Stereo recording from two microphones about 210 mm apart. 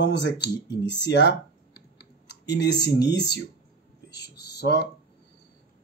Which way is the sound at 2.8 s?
55° left (ahead or behind).